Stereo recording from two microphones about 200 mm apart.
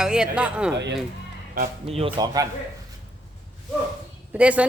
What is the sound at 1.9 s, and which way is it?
Speech, 30° right (ahead or behind).